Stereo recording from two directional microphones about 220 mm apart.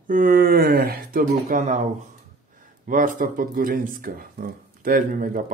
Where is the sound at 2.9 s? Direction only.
35° right (ahead or behind).